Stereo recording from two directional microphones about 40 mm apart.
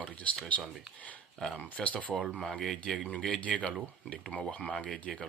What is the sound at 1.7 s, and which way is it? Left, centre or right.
Speech, left.